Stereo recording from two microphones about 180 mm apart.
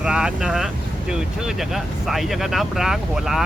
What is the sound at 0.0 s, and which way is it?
Speech, 5° right (ahead or behind).